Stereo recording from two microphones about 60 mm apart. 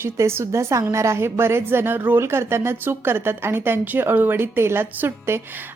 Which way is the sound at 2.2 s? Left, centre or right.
Right.